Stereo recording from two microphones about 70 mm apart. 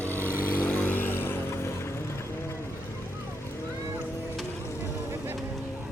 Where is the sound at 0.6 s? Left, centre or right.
Left.